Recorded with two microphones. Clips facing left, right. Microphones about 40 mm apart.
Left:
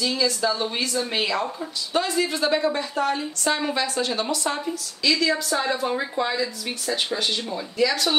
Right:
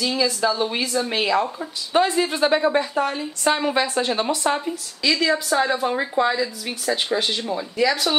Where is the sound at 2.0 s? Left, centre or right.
Right.